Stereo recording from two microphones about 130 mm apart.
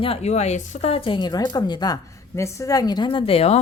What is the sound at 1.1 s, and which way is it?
Speech, 35° left (ahead or behind).